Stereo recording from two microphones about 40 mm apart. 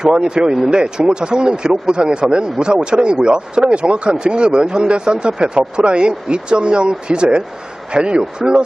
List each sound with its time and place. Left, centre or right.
0.0 s speech: right